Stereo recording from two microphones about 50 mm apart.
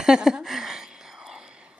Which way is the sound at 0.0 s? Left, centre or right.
Centre.